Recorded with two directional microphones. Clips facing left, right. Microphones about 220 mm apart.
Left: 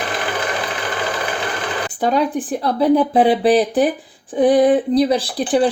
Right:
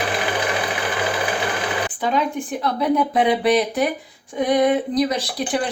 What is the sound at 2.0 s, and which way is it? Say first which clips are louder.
Speech: left 6 dB; 40° left (ahead or behind).